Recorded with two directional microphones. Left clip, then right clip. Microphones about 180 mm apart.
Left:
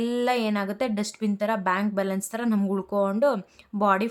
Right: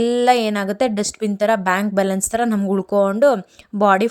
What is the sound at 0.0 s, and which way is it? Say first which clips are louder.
Speech: right 9 dB; 30° right (ahead or behind).